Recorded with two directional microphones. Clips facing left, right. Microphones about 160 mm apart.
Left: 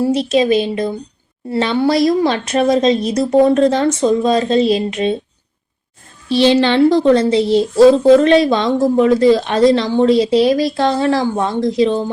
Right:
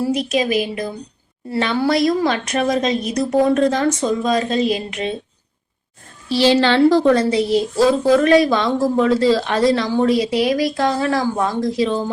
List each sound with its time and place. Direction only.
0.0 s a woman's voice: 30° left (ahead or behind)
6.2 s a woman's voice: 20° left (ahead or behind)